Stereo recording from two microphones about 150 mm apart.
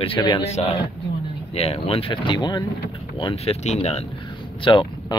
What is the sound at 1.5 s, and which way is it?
Speech, 40° left (ahead or behind).